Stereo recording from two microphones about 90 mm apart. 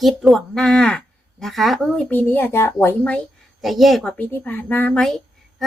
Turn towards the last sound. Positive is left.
turn(degrees=5)  # may be behind; listen again after turning